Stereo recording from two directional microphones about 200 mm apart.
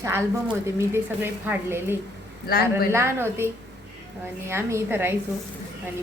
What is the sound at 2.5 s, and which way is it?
Speech, 50° left (ahead or behind).